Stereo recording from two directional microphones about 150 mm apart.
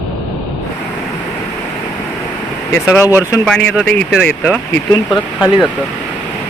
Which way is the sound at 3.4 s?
5° left (ahead or behind).